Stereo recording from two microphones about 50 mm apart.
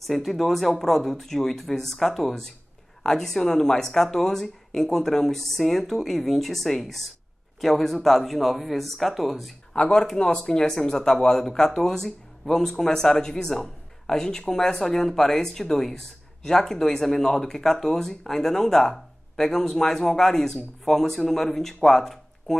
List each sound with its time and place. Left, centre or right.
0.0 s speech: centre
9.8 s speech: centre
21.8 s a sound: centre